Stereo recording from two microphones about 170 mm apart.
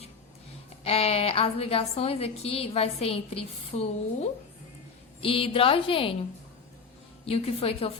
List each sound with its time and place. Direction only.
0.9 s a woman's voice: 35° left (ahead or behind)
7.3 s a woman's voice: 35° left (ahead or behind)